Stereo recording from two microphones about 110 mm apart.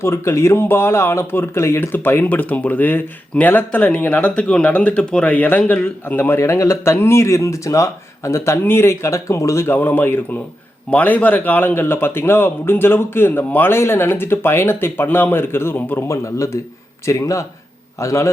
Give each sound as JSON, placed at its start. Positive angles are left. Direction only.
{"t": 0.0, "sound": "speech", "side_deg": 25}